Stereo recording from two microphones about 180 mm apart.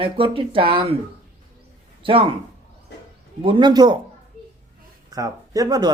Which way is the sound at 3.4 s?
25° right (ahead or behind).